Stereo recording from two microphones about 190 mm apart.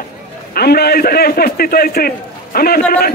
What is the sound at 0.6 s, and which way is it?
A man's voice, 55° left (ahead or behind).